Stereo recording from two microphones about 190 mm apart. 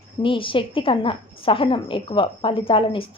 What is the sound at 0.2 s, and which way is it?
Speech, 25° left (ahead or behind).